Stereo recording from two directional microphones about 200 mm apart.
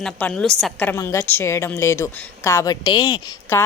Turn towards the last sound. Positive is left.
turn(degrees=20)  # may be behind; listen again after turning